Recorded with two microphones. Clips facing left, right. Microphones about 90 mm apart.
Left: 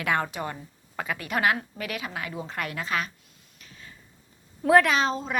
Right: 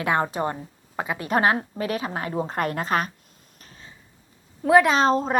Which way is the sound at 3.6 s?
40° right (ahead or behind).